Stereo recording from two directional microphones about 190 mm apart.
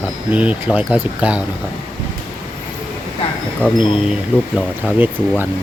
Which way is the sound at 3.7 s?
25° left (ahead or behind).